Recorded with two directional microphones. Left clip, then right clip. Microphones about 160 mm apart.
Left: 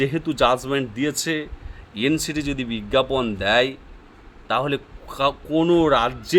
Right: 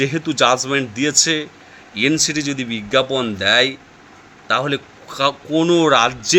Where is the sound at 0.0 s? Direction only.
20° left (ahead or behind).